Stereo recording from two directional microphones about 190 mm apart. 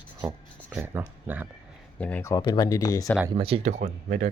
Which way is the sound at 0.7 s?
10° right (ahead or behind).